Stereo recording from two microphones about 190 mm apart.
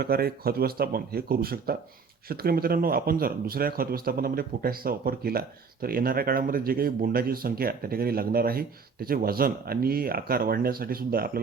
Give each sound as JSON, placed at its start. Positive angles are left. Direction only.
{"t": 0.0, "sound": "speech", "side_deg": -55}